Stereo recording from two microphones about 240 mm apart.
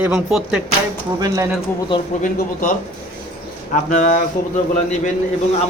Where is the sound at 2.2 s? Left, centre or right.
Left.